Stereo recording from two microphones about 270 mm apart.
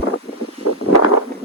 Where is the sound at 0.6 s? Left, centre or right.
Left.